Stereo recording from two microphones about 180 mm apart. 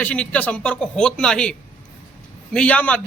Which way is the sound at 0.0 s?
5° left (ahead or behind).